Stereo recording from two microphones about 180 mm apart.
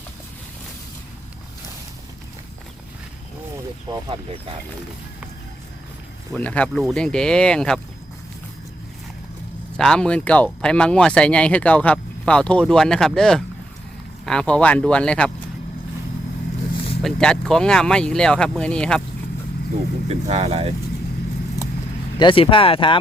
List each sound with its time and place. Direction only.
3.8 s speech: 20° right (ahead or behind)
6.3 s speech: 5° left (ahead or behind)
9.7 s speech: 5° left (ahead or behind)
17.0 s speech: 5° left (ahead or behind)
20.1 s speech: 35° right (ahead or behind)
22.2 s speech: 30° left (ahead or behind)